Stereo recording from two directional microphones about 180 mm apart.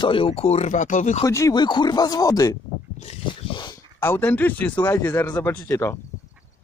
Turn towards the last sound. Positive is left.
turn(degrees=15)  # may be behind; listen again after turning